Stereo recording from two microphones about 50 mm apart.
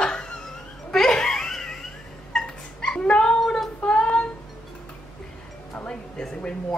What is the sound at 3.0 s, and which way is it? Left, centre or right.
Cat, centre.